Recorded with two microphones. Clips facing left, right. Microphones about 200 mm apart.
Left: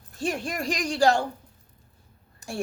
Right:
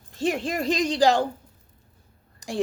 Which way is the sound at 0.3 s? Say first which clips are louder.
Right 4 dB; 25° right (ahead or behind).